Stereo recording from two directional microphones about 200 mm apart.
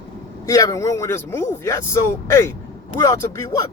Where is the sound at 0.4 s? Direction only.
15° left (ahead or behind).